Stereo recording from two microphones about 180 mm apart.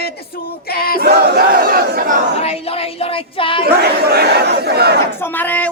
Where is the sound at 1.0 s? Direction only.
65° right (ahead or behind).